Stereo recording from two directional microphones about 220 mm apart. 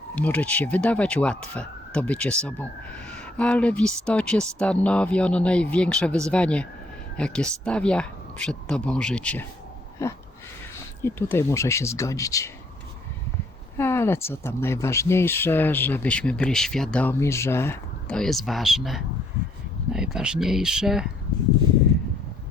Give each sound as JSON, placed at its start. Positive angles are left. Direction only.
{"t": 0.2, "sound": "speech", "side_deg": 5}
{"t": 13.7, "sound": "speech", "side_deg": 10}